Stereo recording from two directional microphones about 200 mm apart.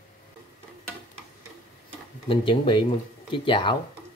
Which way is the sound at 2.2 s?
25° left (ahead or behind).